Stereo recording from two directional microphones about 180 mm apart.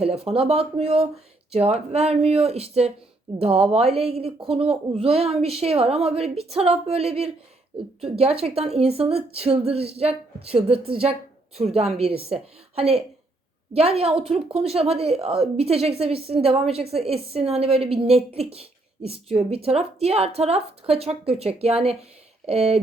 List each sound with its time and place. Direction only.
0.0 s a woman's voice: 35° right (ahead or behind)